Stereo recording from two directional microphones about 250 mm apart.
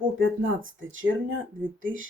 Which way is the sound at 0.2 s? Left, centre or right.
Right.